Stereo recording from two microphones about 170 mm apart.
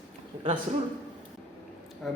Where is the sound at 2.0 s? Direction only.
Centre (ahead or behind).